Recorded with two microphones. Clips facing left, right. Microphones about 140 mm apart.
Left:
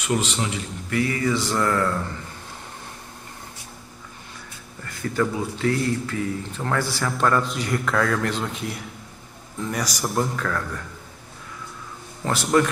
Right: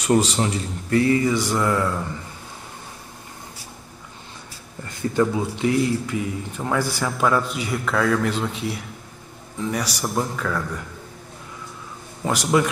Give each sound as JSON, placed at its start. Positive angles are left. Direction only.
{"t": 0.0, "sound": "speech", "side_deg": -40}
{"t": 1.2, "sound": "speech", "side_deg": -10}
{"t": 4.8, "sound": "a man's voice", "side_deg": -20}
{"t": 12.2, "sound": "speech", "side_deg": -10}